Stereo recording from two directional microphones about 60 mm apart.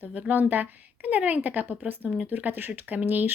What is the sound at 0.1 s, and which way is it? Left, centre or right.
A woman's voice, right.